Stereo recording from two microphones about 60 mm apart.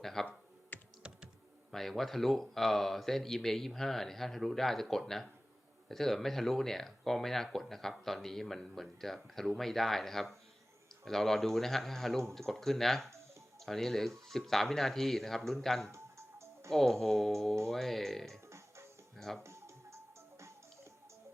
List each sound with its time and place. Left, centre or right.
0.0 s speech: centre
0.7 s computer keyboard: left
1.7 s speech: centre
15.9 s music: right
16.7 s speech: centre
19.4 s music: right